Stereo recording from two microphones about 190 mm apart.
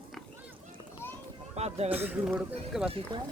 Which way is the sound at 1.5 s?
35° right (ahead or behind).